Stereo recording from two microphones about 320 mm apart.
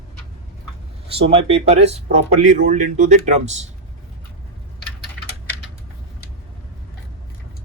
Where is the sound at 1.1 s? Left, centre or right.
Centre.